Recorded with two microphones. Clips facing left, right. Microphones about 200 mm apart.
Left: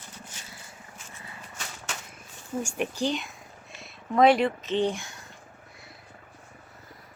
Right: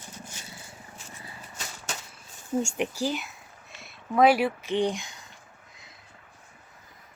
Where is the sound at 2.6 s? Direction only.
20° right (ahead or behind).